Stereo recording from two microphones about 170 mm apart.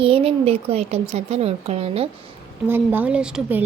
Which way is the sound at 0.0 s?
35° right (ahead or behind).